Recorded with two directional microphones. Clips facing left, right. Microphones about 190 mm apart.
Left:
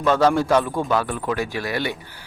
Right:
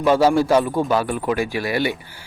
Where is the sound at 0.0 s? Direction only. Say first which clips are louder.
Right 2 dB; 10° right (ahead or behind).